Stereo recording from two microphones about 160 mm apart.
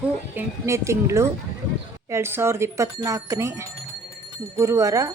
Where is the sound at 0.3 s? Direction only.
20° right (ahead or behind).